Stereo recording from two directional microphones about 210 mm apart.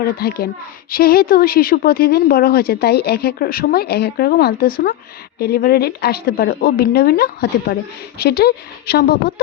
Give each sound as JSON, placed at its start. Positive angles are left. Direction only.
{"t": 0.0, "sound": "a woman's voice", "side_deg": 45}